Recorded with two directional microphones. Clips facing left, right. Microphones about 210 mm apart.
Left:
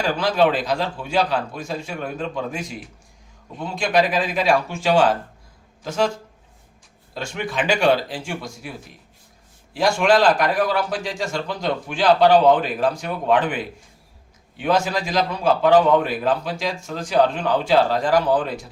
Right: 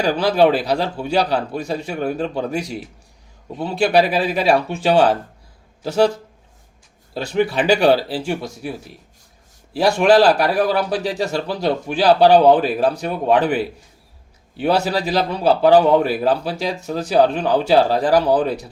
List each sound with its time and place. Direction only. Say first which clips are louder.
0.0 s a man's voice: right 4 dB; 35° right (ahead or behind)
7.1 s a man's voice: right 9 dB; 35° right (ahead or behind)
9.7 s a man's voice: right 4 dB; 35° right (ahead or behind)